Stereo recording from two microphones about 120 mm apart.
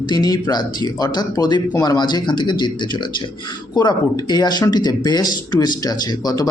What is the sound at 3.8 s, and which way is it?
A man's voice, 35° left (ahead or behind).